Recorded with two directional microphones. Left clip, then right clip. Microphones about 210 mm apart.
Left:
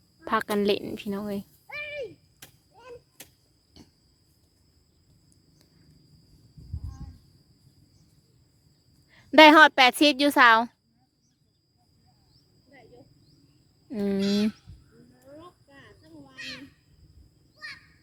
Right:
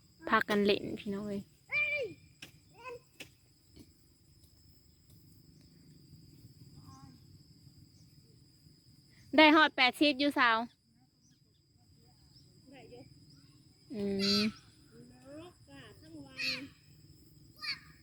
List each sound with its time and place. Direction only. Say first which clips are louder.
0.2 s speech: left 3 dB; 10° left (ahead or behind)
0.9 s speech: left 6 dB; 25° left (ahead or behind)
1.6 s a sound: right 5 dB; centre (ahead or behind)
2.4 s a sound: even; 25° left (ahead or behind)
9.1 s speech: left 10 dB; 35° left (ahead or behind)
13.9 s speech: left 7 dB; 40° left (ahead or behind)
14.2 s speech: left 1 dB; 15° right (ahead or behind)
15.4 s cricket: left 3 dB; 10° left (ahead or behind)
16.3 s a sound: right 3 dB; 15° right (ahead or behind)